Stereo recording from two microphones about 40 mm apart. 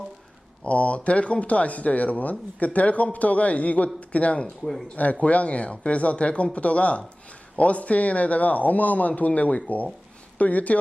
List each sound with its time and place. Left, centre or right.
0.6 s a man's voice: left